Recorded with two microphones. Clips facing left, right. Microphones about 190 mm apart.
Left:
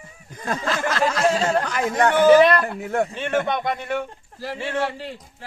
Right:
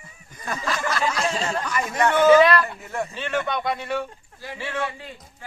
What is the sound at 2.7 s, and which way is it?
Speech, 60° left (ahead or behind).